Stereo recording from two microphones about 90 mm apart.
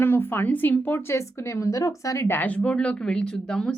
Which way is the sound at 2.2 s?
20° left (ahead or behind).